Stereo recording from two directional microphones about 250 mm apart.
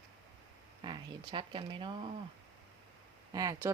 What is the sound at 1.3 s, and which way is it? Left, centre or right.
Speech, centre.